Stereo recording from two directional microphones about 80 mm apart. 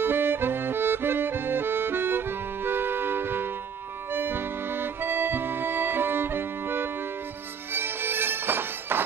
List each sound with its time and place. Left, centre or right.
0.0 s accordion: right
4.1 s music: right